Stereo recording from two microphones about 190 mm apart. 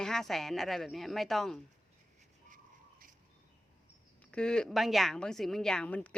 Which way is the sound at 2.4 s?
45° right (ahead or behind).